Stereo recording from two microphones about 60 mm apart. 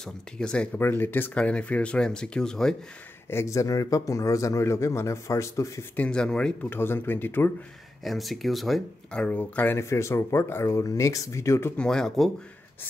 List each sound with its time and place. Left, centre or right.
0.0 s speech: centre
0.7 s speech: left
1.3 s speech: left
3.4 s speech: left
5.9 s speech: centre
6.7 s speech: left
8.0 s speech: centre
9.1 s speech: left
9.8 s speech: left
11.7 s speech: centre